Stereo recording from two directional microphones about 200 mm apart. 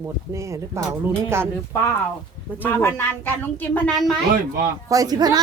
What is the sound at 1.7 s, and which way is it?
A woman's voice, 15° left (ahead or behind).